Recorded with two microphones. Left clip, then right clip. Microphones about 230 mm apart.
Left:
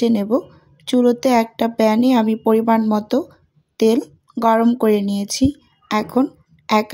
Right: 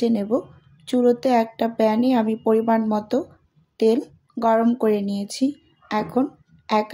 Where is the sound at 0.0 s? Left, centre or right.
Left.